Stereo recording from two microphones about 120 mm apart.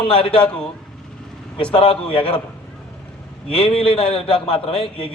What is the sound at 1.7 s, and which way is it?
Speech, 50° left (ahead or behind).